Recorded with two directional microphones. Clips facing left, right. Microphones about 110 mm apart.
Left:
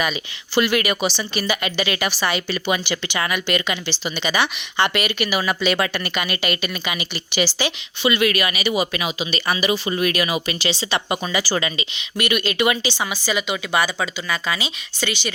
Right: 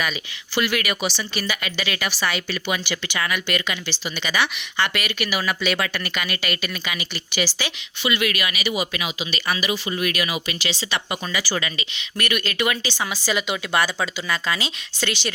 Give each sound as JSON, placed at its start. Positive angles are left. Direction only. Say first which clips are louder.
{"t": 0.0, "sound": "speech", "louder": "left 3 dB", "side_deg": 20}
{"t": 13.0, "sound": "speech", "louder": "left 1 dB", "side_deg": 0}